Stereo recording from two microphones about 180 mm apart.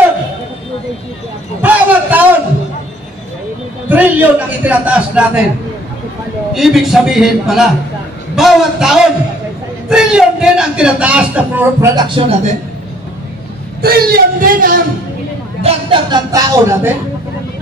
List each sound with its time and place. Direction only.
1.6 s a sound: 10° right (ahead or behind)
3.9 s a man's voice: 10° right (ahead or behind)
6.5 s a man's voice: centre (ahead or behind)
11.9 s speech: 25° right (ahead or behind)
13.7 s speech: 60° right (ahead or behind)
15.6 s speech: 25° right (ahead or behind)